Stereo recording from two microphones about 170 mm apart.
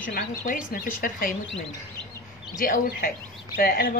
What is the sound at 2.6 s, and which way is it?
Speech, 60° left (ahead or behind).